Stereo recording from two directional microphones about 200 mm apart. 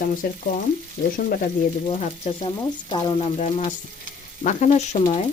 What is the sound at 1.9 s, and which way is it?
Speech, 35° left (ahead or behind).